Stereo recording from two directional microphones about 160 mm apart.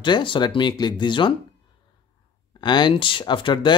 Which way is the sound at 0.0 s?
30° left (ahead or behind).